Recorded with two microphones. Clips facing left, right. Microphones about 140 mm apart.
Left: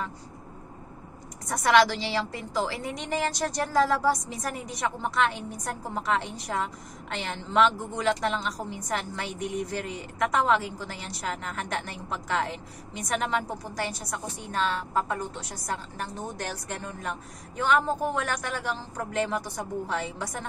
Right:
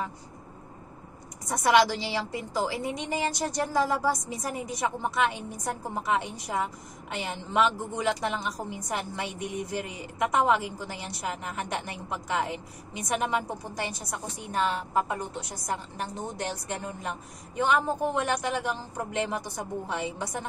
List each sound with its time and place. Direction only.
1.5 s a woman's voice: 10° right (ahead or behind)